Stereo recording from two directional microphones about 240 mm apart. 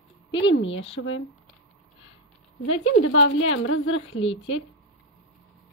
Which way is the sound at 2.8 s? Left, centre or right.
Left.